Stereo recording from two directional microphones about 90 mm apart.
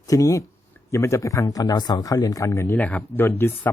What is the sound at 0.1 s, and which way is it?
Speech, 35° left (ahead or behind).